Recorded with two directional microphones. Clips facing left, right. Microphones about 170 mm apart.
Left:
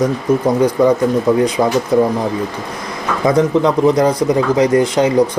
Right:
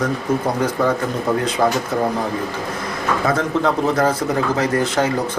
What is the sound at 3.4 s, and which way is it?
A man's voice, 15° left (ahead or behind).